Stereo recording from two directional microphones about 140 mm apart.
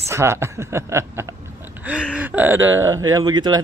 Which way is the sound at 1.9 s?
10° right (ahead or behind).